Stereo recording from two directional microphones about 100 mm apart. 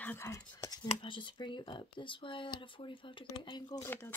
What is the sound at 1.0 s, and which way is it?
Speech, 55° left (ahead or behind).